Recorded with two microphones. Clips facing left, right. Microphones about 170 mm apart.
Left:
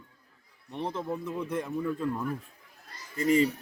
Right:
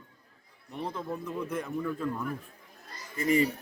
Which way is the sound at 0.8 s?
20° left (ahead or behind).